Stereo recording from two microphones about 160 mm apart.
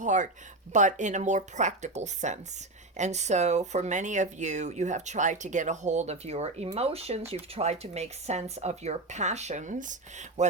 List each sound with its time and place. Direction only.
0.0 s speech: 50° right (ahead or behind)